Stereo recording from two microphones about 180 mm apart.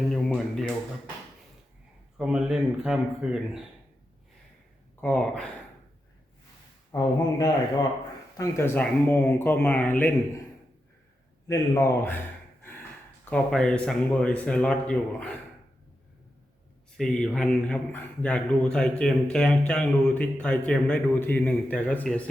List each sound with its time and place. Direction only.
0.1 s speech: 5° left (ahead or behind)
2.1 s speech: 5° right (ahead or behind)
4.9 s speech: 5° left (ahead or behind)
6.9 s a man's voice: 20° left (ahead or behind)
11.4 s a man's voice: 20° left (ahead or behind)
13.3 s speech: 5° left (ahead or behind)
17.0 s a man's voice: 5° left (ahead or behind)